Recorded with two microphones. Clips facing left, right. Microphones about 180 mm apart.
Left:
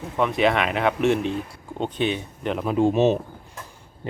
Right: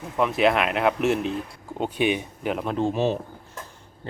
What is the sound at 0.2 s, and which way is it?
Speech, centre (ahead or behind).